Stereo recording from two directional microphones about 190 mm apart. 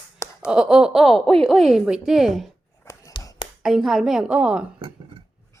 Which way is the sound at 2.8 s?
15° left (ahead or behind).